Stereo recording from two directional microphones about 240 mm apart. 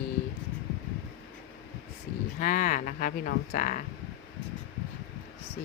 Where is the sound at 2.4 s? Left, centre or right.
Left.